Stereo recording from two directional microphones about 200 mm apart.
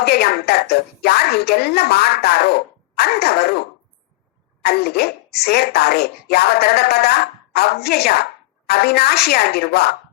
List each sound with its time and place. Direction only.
0.0 s speech: 50° left (ahead or behind)
4.6 s speech: 55° left (ahead or behind)